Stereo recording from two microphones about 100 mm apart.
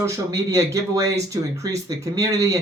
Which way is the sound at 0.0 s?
35° right (ahead or behind).